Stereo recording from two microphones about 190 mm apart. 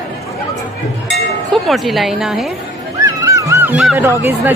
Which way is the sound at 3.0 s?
15° right (ahead or behind).